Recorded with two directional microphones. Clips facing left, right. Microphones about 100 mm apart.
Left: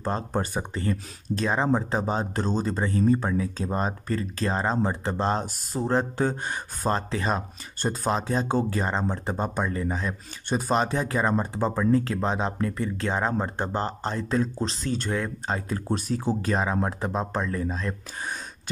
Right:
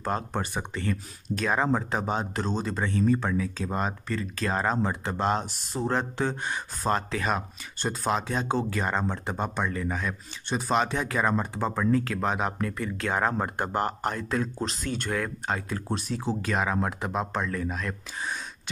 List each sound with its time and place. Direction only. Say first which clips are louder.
0.0 s speech: left 2 dB; 35° left (ahead or behind)
15.4 s speech: left 2 dB; 30° left (ahead or behind)